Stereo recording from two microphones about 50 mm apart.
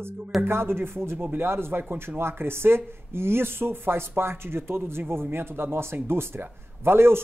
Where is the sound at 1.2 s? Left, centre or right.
Right.